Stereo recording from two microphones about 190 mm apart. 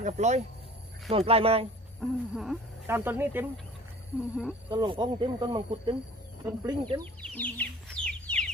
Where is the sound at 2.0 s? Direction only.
Centre (ahead or behind).